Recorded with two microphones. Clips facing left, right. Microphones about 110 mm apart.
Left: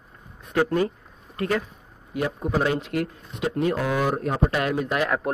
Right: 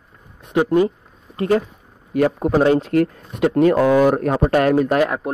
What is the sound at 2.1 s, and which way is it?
Speech, 65° right (ahead or behind).